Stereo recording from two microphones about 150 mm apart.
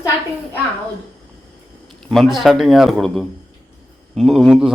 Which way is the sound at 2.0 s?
Centre (ahead or behind).